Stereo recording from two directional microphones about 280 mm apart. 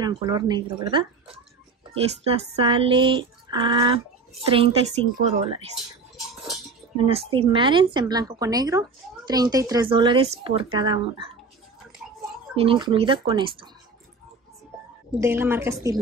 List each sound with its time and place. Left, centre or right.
0.0 s speech: centre
7.0 s speech: centre
12.5 s speech: centre
15.1 s speech: centre